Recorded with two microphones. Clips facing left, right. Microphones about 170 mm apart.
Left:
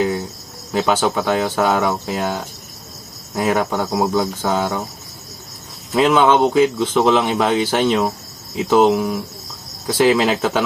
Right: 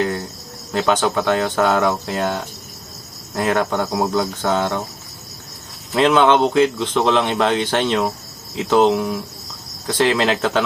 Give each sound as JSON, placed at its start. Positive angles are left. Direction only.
{"t": 0.0, "sound": "cricket", "side_deg": 5}
{"t": 0.7, "sound": "speech", "side_deg": 5}
{"t": 5.9, "sound": "speech", "side_deg": 5}